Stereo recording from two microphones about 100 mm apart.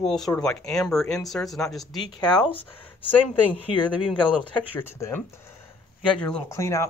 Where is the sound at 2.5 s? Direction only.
15° left (ahead or behind).